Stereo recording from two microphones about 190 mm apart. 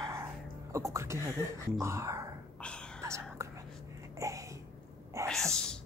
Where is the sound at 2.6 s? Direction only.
5° left (ahead or behind).